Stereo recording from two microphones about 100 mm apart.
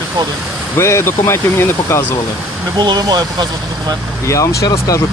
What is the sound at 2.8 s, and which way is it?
Speech, 45° right (ahead or behind).